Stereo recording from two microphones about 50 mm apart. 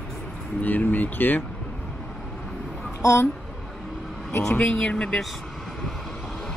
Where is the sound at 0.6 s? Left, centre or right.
Left.